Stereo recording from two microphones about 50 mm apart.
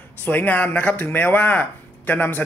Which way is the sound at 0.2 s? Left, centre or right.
Left.